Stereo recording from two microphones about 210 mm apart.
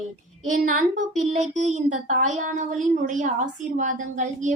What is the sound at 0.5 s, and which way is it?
Speech, 40° right (ahead or behind).